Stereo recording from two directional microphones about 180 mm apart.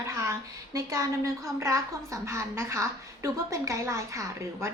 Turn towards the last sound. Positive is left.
turn(degrees=-15)  # may be behind; listen again after turning